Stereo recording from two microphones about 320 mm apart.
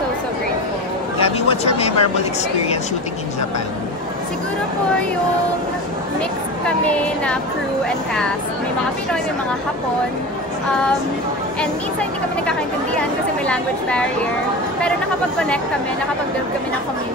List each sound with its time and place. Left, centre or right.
1.2 s speech: centre
6.9 s speech: centre
11.6 s speech: centre